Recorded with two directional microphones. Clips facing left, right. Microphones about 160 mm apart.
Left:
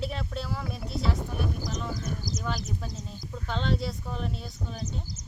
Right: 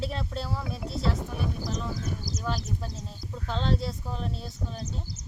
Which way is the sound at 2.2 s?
30° right (ahead or behind).